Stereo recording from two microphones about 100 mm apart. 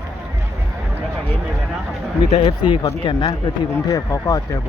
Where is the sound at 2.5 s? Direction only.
55° left (ahead or behind).